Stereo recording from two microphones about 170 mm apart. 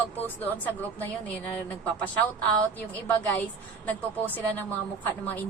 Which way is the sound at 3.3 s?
10° left (ahead or behind).